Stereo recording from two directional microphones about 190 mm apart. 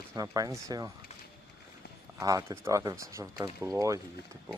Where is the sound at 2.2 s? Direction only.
15° right (ahead or behind).